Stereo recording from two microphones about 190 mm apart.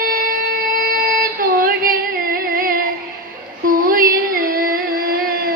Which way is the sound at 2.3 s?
50° right (ahead or behind).